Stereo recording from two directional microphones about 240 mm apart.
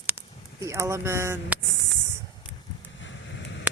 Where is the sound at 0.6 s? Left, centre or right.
Centre.